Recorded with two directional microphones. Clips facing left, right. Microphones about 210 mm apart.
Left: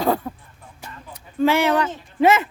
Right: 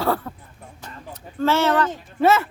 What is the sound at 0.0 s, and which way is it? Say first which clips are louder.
Speech: left 2 dB; 15° left (ahead or behind).